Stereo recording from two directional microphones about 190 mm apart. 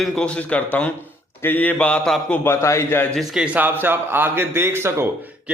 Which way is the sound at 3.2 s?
5° right (ahead or behind).